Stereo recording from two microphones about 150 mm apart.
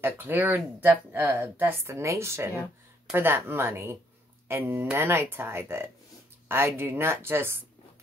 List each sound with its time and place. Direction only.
0.0 s speech: 15° right (ahead or behind)